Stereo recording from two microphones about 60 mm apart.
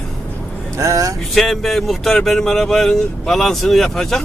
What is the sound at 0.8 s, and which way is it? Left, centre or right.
Vehicle, right.